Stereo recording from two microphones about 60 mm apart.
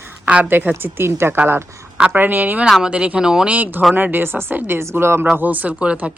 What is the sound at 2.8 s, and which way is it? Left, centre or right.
Speech, centre.